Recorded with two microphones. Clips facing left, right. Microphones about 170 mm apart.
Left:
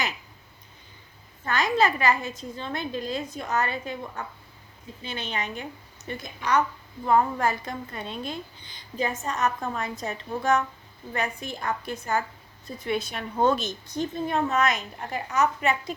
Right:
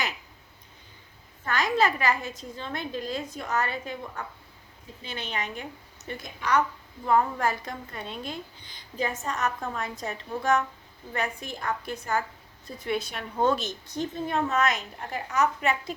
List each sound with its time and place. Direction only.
1.5 s a woman's voice: 25° left (ahead or behind)